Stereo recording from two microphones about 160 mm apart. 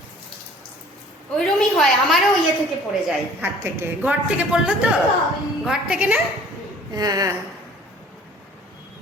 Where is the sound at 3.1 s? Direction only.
10° right (ahead or behind).